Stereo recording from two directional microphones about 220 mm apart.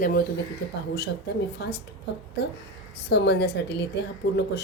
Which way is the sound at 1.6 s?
50° left (ahead or behind).